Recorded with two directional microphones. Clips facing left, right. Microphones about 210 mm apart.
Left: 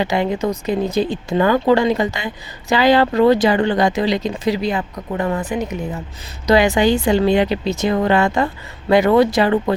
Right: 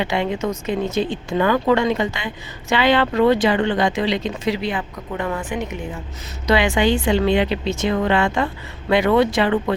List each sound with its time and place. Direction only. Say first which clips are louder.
0.0 s speech: left 3 dB; 40° left (ahead or behind)